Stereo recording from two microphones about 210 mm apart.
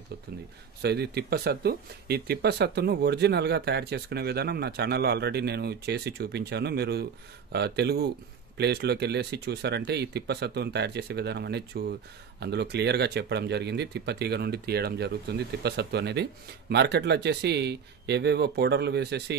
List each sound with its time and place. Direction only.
0.8 s speech: 50° right (ahead or behind)